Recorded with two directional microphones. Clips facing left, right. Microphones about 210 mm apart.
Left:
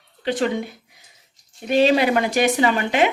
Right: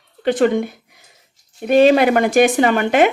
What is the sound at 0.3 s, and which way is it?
A woman's voice, 55° right (ahead or behind).